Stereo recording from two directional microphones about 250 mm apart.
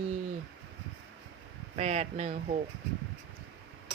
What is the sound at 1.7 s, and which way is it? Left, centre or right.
Speech, right.